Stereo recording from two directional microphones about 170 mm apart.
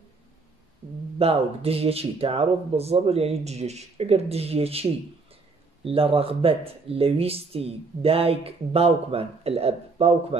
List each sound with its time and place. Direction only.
1.1 s speech: 35° right (ahead or behind)